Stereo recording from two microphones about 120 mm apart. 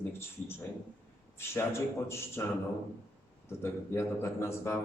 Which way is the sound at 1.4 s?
20° left (ahead or behind).